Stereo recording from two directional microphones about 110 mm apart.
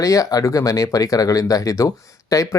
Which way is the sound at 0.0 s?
30° left (ahead or behind).